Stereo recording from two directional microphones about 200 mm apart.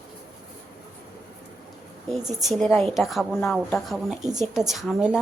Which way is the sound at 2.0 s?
Centre (ahead or behind).